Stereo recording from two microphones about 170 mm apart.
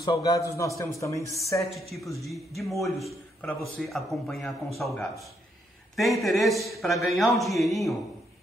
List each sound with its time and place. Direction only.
0.0 s a man's voice: 20° left (ahead or behind)
1.6 s a man's voice: centre (ahead or behind)